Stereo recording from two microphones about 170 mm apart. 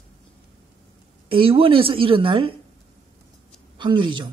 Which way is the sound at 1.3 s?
30° right (ahead or behind).